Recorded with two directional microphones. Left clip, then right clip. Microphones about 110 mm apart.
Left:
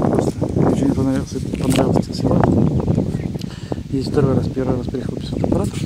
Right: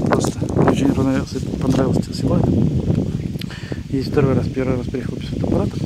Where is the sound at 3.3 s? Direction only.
Centre (ahead or behind).